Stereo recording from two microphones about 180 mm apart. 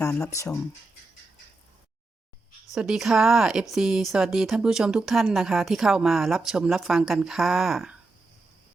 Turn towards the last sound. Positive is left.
turn(degrees=0)  # may be behind; listen again after turning